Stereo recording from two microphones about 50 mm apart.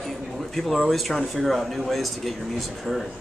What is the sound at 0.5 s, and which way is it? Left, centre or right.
Speech, centre.